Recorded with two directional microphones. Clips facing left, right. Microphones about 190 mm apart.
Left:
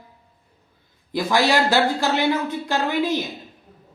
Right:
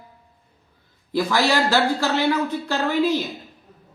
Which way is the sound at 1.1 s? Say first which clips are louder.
Left 1 dB; 15° left (ahead or behind).